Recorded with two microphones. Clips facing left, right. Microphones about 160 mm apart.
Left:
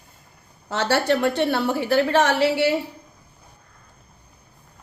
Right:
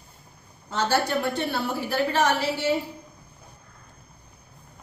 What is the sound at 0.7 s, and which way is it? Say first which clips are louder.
A woman's voice: left 4 dB; 75° left (ahead or behind).